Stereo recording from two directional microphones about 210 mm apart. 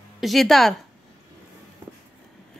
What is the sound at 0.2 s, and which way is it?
Speech, centre (ahead or behind).